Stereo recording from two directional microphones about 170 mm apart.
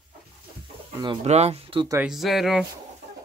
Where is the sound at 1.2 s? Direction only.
40° right (ahead or behind).